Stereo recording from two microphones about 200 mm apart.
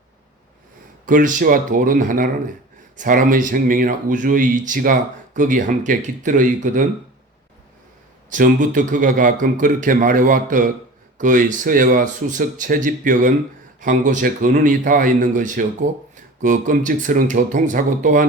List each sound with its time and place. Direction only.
1.0 s a man's voice: 45° right (ahead or behind)
8.3 s a man's voice: 40° right (ahead or behind)